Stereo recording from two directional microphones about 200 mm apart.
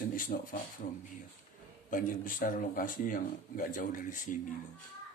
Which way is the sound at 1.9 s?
45° left (ahead or behind).